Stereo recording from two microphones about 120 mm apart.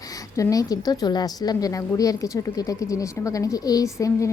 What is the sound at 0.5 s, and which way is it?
A woman's voice, 30° left (ahead or behind).